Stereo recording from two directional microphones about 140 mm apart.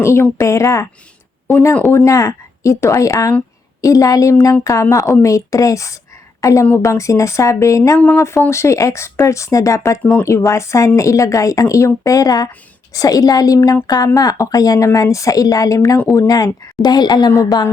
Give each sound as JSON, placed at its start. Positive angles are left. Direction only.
{"t": 0.0, "sound": "a woman's voice", "side_deg": 20}